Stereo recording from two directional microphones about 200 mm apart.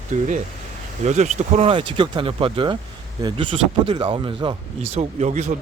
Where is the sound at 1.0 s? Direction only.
35° right (ahead or behind).